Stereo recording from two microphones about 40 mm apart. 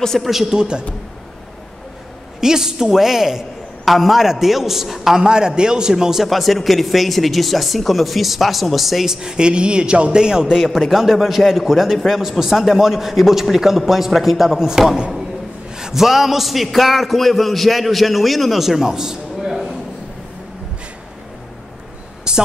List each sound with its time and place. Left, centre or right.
0.2 s speech: centre
0.5 s a man's voice: right
2.4 s a man's voice: centre
5.1 s a man's voice: centre
6.2 s a man's voice: centre
19.5 s a sound: centre
22.3 s a sound: right